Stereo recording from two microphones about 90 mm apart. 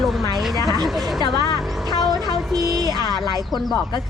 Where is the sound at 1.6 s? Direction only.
Centre (ahead or behind).